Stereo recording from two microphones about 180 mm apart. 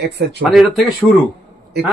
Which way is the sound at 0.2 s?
65° right (ahead or behind).